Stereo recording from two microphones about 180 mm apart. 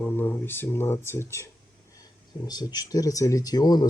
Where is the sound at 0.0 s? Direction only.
10° left (ahead or behind).